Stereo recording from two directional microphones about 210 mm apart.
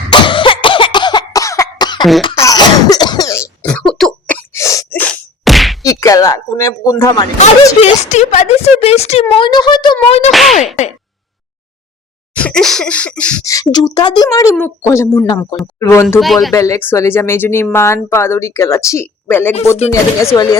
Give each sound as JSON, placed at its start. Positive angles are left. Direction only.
{"t": 0.1, "sound": "cough", "side_deg": 25}
{"t": 2.4, "sound": "throat clearing", "side_deg": 15}
{"t": 5.8, "sound": "speech", "side_deg": 15}
{"t": 7.8, "sound": "speech", "side_deg": 30}
{"t": 12.4, "sound": "speech", "side_deg": 5}
{"t": 13.4, "sound": "speech", "side_deg": 15}
{"t": 16.2, "sound": "speech", "side_deg": 0}
{"t": 16.5, "sound": "speech", "side_deg": 15}